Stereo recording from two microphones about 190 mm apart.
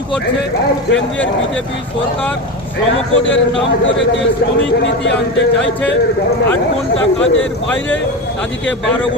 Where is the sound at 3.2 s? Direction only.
75° left (ahead or behind).